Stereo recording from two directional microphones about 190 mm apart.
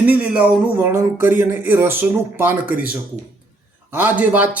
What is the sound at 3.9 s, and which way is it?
Speech, 10° right (ahead or behind).